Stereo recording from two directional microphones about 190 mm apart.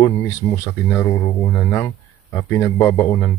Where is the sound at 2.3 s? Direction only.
10° left (ahead or behind).